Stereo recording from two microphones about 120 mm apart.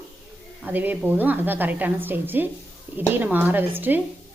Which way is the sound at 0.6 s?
15° right (ahead or behind).